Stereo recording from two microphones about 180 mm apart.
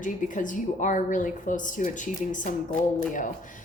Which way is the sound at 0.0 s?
45° left (ahead or behind).